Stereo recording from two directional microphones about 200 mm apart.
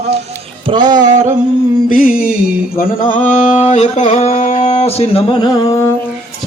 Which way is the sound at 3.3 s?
35° left (ahead or behind).